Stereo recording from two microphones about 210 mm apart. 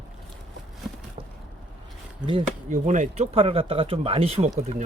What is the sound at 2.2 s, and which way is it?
Speech, 30° right (ahead or behind).